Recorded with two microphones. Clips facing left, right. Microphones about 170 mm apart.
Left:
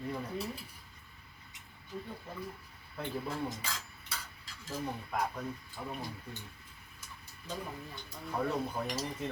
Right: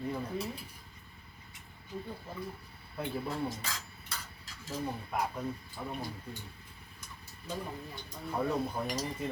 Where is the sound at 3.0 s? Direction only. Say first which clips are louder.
Right 2 dB; centre (ahead or behind).